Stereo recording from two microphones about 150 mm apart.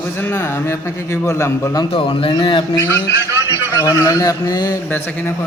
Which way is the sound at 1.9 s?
35° left (ahead or behind).